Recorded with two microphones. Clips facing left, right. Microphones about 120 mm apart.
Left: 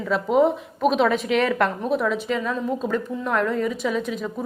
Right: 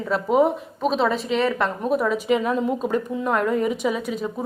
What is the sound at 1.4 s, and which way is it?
A woman's voice, centre (ahead or behind).